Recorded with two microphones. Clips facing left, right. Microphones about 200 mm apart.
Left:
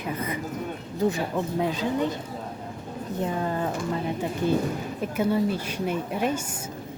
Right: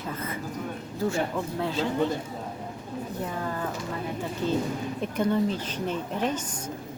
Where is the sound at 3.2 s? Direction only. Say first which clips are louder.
Left 6 dB; 25° left (ahead or behind).